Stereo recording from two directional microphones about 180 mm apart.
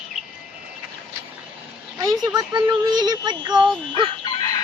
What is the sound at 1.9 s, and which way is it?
Speech, 20° right (ahead or behind).